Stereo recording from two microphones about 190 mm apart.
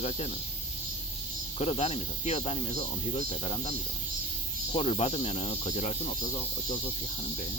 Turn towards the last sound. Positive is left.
turn(degrees=35)  # may be behind; listen again after turning